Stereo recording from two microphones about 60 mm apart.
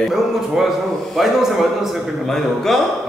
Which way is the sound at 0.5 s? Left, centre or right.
Centre.